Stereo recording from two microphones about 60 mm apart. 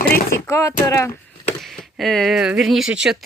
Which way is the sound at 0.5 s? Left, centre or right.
Left.